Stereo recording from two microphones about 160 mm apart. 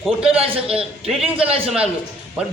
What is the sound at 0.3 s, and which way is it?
A man's voice, 35° right (ahead or behind).